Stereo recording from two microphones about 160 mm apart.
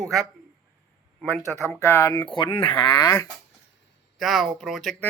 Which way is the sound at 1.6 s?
15° right (ahead or behind).